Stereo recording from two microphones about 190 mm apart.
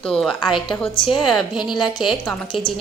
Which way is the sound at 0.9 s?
25° left (ahead or behind).